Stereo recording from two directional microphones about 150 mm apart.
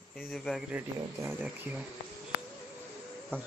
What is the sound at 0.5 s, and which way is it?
Speech, centre (ahead or behind).